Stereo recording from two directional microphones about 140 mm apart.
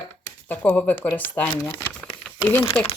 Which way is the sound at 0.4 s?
10° left (ahead or behind).